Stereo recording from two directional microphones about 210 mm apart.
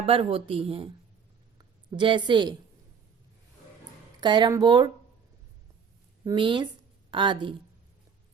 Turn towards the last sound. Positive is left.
turn(degrees=-20)  # may be behind; listen again after turning